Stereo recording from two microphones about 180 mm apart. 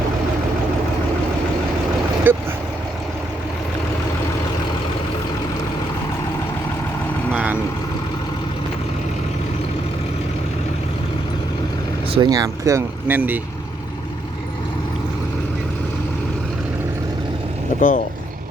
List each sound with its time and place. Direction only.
2.3 s vehicle: 10° right (ahead or behind)
12.1 s speech: 20° right (ahead or behind)
17.7 s speech: 50° left (ahead or behind)